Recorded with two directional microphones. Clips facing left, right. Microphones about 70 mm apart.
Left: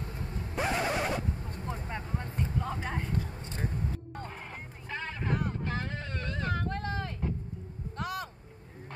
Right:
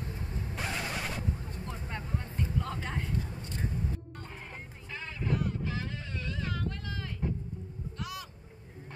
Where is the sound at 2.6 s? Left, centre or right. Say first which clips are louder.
Left 3 dB; centre.